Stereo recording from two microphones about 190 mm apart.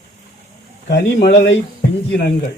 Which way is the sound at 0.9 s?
65° left (ahead or behind).